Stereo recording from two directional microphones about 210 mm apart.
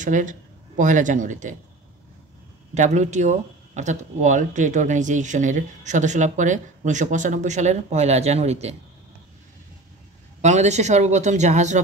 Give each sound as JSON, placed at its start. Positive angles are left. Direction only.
{"t": 0.0, "sound": "speech", "side_deg": -35}
{"t": 2.7, "sound": "speech", "side_deg": -35}
{"t": 10.4, "sound": "speech", "side_deg": -35}